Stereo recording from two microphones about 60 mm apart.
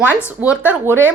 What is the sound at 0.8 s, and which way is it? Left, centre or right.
Speech, right.